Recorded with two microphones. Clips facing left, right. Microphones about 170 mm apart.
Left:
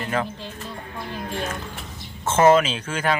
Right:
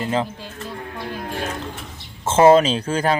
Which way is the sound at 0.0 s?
25° right (ahead or behind).